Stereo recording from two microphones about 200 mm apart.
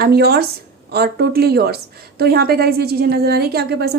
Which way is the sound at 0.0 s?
50° right (ahead or behind).